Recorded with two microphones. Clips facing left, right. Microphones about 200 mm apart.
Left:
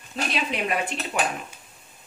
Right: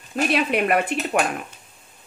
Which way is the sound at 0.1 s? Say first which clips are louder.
Right 7 dB; 55° right (ahead or behind).